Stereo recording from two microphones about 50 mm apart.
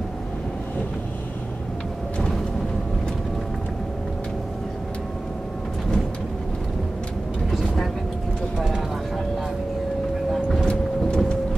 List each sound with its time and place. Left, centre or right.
7.5 s vehicle: centre
10.3 s vehicle: centre
10.7 s vehicle: centre